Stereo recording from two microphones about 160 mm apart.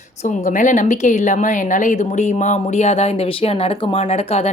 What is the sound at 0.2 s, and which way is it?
Speech, 50° left (ahead or behind).